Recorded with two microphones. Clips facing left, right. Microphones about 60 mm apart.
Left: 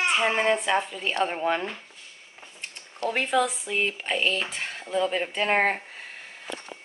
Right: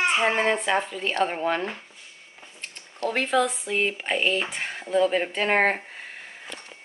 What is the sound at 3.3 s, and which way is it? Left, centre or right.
Speech, centre.